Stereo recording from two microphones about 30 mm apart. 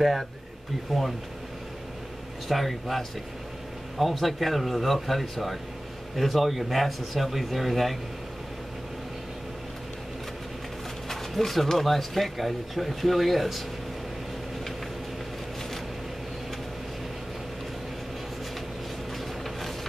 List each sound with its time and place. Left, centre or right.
2.4 s speech: centre
11.1 s speech: centre
19.4 s a sound: centre